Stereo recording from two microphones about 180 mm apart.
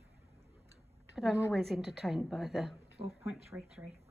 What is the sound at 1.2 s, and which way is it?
A woman's voice, centre (ahead or behind).